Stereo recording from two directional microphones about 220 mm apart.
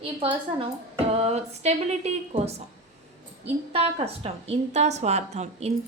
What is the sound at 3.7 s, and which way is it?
A woman's voice, 25° right (ahead or behind).